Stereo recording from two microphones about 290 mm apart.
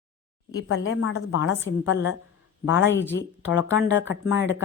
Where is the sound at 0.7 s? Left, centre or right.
Left.